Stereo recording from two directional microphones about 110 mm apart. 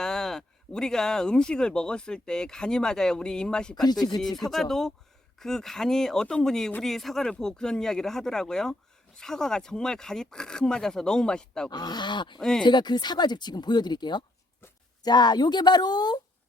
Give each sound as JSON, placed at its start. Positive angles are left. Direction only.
{"t": 0.0, "sound": "speech", "side_deg": 5}
{"t": 11.7, "sound": "speech", "side_deg": 40}
{"t": 12.4, "sound": "speech", "side_deg": 5}
{"t": 12.6, "sound": "speech", "side_deg": 40}